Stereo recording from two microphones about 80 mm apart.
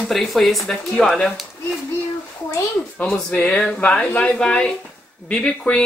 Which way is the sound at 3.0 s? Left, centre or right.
Centre.